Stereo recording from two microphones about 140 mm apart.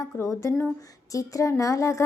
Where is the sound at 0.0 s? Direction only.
25° left (ahead or behind).